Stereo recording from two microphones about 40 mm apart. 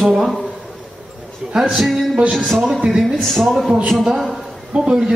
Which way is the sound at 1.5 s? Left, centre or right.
Centre.